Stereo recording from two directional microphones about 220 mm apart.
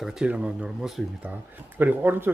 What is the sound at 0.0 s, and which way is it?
Speech, 5° right (ahead or behind).